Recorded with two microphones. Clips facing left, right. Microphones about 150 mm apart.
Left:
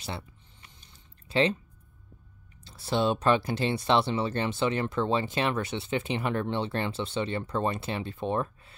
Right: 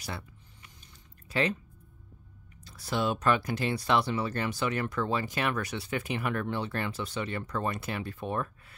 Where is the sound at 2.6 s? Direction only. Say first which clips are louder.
Left 4 dB; 30° left (ahead or behind).